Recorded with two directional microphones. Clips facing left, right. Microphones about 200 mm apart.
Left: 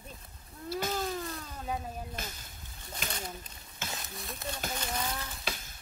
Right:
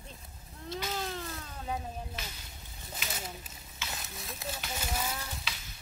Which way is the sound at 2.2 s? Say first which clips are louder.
Left 3 dB; 50° left (ahead or behind).